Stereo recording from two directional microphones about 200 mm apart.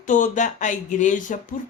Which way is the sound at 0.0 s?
40° left (ahead or behind).